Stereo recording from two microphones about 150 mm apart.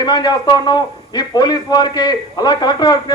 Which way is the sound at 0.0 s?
30° left (ahead or behind).